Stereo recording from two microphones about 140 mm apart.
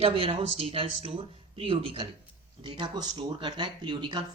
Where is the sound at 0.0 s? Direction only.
45° right (ahead or behind).